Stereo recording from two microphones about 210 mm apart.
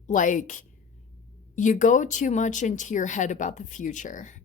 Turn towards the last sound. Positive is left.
turn(degrees=35)  # may be behind; listen again after turning